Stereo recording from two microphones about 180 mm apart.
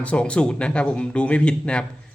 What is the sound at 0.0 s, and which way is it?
Speech, 5° left (ahead or behind).